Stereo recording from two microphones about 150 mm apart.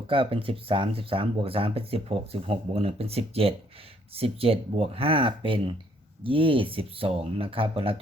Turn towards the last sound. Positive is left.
turn(degrees=-40)  # may be behind; listen again after turning